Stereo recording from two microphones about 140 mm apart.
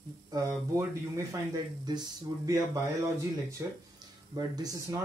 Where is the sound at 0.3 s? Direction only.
20° right (ahead or behind).